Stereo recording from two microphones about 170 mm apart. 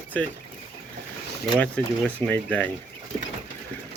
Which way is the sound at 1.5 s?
10° left (ahead or behind).